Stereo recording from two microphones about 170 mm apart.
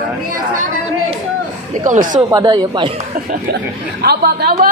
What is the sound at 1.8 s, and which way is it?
Speech, 50° right (ahead or behind).